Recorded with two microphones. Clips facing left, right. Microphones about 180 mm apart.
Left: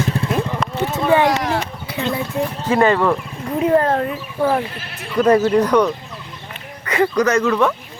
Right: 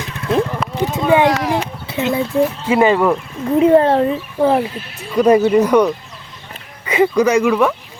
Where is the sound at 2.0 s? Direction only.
10° right (ahead or behind).